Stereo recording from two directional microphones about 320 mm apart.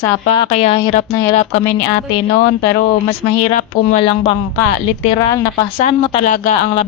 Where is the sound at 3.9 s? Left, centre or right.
Centre.